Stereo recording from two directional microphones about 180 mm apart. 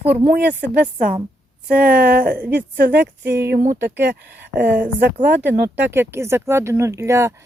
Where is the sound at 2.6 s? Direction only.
70° right (ahead or behind).